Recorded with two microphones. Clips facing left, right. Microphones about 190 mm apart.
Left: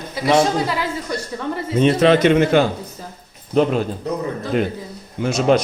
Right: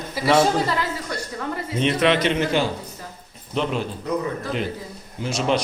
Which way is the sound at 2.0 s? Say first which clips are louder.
Left 6 dB; 45° left (ahead or behind).